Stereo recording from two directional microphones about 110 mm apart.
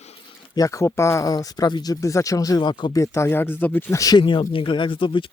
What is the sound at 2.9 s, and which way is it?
Speech, 30° left (ahead or behind).